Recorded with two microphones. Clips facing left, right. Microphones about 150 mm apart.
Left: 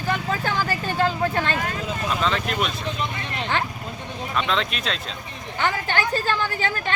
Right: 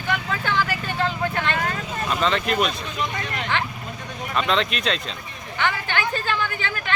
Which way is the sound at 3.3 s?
35° left (ahead or behind).